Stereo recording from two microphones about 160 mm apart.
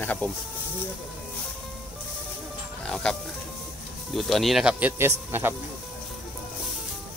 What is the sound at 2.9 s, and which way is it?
Speech, 5° left (ahead or behind).